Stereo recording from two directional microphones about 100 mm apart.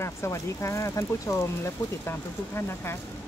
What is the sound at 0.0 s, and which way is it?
Speech, 30° left (ahead or behind).